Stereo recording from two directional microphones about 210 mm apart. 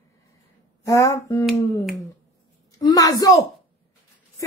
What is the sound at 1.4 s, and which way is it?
Speech, centre (ahead or behind).